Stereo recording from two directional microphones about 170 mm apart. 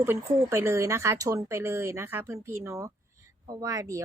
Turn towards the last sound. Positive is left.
turn(degrees=-20)  # may be behind; listen again after turning